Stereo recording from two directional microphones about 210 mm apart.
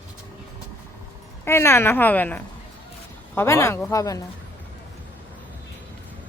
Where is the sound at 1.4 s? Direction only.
10° left (ahead or behind).